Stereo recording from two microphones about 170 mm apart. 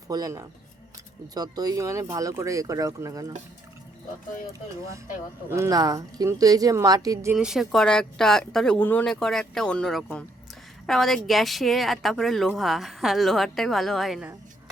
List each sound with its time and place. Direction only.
0.1 s speech: 20° right (ahead or behind)
5.5 s speech: 15° right (ahead or behind)
7.3 s a woman's voice: 5° right (ahead or behind)